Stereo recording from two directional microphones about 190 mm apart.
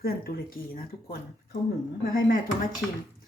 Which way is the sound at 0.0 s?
50° left (ahead or behind).